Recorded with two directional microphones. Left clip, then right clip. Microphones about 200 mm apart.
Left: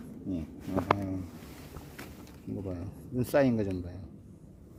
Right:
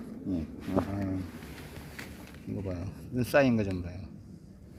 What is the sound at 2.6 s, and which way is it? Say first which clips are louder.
A man's voice: right 2 dB; 15° left (ahead or behind).